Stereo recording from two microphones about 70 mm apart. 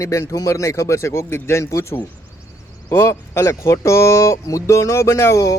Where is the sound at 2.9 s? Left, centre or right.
Left.